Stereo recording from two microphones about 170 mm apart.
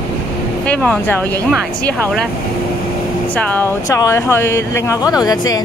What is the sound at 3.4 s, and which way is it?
Speech, 10° left (ahead or behind).